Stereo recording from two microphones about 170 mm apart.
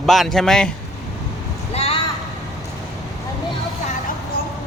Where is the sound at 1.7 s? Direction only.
35° left (ahead or behind).